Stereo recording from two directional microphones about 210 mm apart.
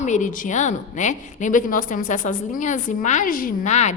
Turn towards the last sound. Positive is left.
turn(degrees=35)  # may be behind; listen again after turning